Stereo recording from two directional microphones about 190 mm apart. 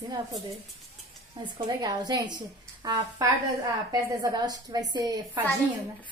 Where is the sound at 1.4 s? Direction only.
20° right (ahead or behind).